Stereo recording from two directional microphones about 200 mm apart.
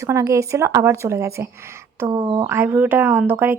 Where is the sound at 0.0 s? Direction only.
15° right (ahead or behind).